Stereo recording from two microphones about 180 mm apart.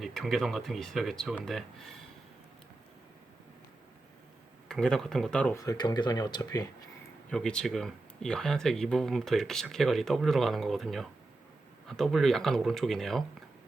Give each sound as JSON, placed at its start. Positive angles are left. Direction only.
{"t": 0.0, "sound": "speech", "side_deg": 0}
{"t": 4.7, "sound": "speech", "side_deg": 5}
{"t": 5.6, "sound": "speech", "side_deg": 25}
{"t": 7.3, "sound": "speech", "side_deg": 5}